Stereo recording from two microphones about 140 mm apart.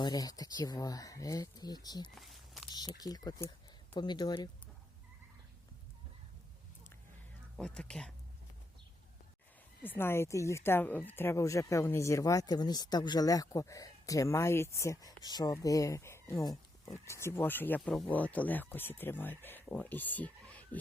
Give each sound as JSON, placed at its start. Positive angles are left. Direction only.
{"t": 0.0, "sound": "speech", "side_deg": 25}
{"t": 2.1, "sound": "a sound", "side_deg": 0}
{"t": 2.6, "sound": "speech", "side_deg": 30}
{"t": 7.6, "sound": "speech", "side_deg": 5}
{"t": 9.8, "sound": "speech", "side_deg": 15}